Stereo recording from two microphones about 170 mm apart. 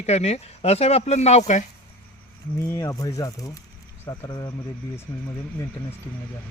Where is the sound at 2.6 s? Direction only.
20° left (ahead or behind).